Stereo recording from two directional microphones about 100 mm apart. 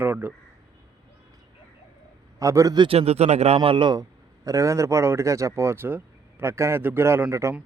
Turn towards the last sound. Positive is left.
turn(degrees=-30)  # may be behind; listen again after turning